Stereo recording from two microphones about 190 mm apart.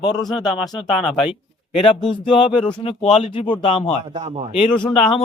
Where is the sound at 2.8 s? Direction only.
30° left (ahead or behind).